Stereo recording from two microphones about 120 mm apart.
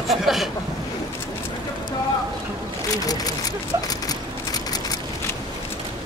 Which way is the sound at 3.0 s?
30° left (ahead or behind).